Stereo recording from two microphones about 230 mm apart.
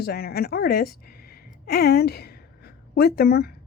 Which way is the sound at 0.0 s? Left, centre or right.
Left.